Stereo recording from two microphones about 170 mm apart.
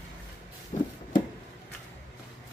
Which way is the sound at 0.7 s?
35° left (ahead or behind).